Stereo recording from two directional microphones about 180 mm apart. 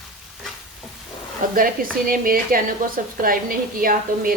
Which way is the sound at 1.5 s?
50° right (ahead or behind).